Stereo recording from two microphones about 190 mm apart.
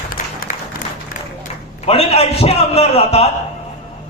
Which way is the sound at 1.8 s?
30° left (ahead or behind).